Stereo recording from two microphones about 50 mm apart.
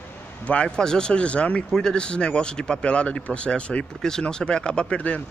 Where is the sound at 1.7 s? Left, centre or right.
Centre.